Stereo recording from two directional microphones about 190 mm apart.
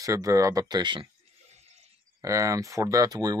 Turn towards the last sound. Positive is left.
turn(degrees=-20)  # may be behind; listen again after turning